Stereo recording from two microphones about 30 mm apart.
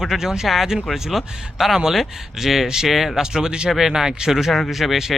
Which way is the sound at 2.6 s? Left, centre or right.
Centre.